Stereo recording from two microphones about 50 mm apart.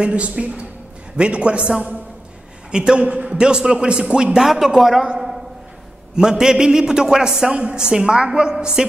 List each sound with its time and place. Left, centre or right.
0.0 s a man's voice: right; by 5.0 s centre
6.1 s a woman's voice: centre